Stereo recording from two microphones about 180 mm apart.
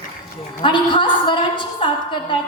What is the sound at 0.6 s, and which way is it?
A woman's voice, 25° left (ahead or behind).